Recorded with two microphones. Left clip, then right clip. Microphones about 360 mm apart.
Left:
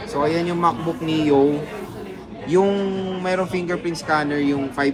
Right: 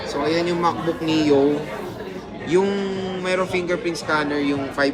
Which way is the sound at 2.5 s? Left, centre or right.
Centre.